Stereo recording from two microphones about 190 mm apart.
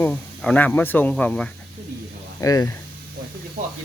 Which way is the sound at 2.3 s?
20° left (ahead or behind).